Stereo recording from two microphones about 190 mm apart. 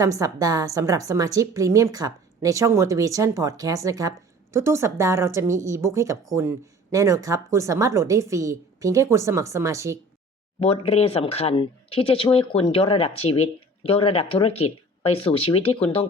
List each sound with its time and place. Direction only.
0.0 s a woman's voice: 15° right (ahead or behind)
10.6 s speech: 30° left (ahead or behind)